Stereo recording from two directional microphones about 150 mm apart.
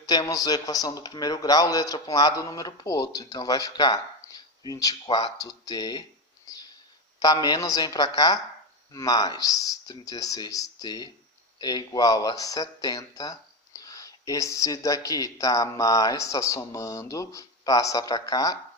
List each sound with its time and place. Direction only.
0.0 s speech: 25° left (ahead or behind)
6.5 s a sound: 25° left (ahead or behind)
7.2 s speech: 25° left (ahead or behind)